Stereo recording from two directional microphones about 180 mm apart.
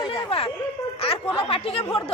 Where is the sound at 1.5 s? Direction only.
30° left (ahead or behind).